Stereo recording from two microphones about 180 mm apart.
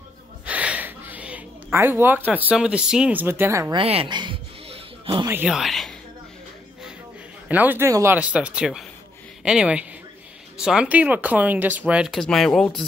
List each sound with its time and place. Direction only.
0.5 s speech: 10° right (ahead or behind)
3.7 s a sound: 30° right (ahead or behind)
5.3 s speech: 5° right (ahead or behind)
7.4 s a woman's voice: 10° right (ahead or behind)